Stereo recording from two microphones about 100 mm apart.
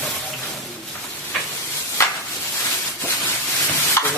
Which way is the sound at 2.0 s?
30° left (ahead or behind).